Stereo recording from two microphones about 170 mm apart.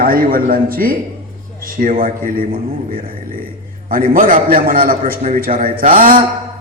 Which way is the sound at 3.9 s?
55° right (ahead or behind).